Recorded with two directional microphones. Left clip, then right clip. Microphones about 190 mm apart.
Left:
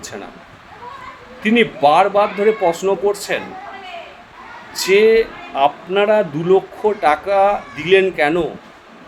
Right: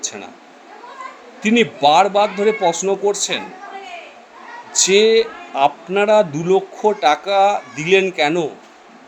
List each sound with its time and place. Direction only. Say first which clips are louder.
0.0 s speech: right 2 dB; 20° right (ahead or behind)
1.4 s speech: left 1 dB; 20° right (ahead or behind)
4.7 s speech: left 1 dB; 20° right (ahead or behind)